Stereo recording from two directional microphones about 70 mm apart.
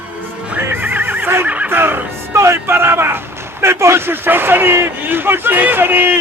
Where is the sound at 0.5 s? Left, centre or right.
Right.